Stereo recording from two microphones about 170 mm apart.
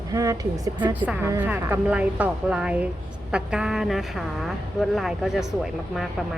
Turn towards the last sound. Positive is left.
turn(degrees=0)  # may be behind; listen again after turning